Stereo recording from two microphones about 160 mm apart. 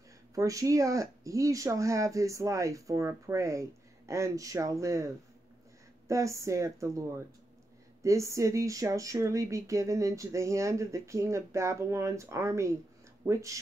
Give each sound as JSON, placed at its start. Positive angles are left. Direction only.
{"t": 0.3, "sound": "speech", "side_deg": -20}